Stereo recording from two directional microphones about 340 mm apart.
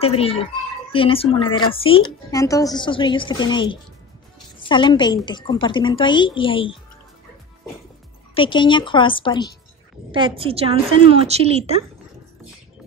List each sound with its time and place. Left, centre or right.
0.0 s a woman's voice: centre
8.4 s a woman's voice: centre
10.1 s a woman's voice: centre